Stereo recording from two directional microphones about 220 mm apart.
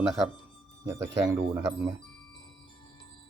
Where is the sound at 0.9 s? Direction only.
15° right (ahead or behind).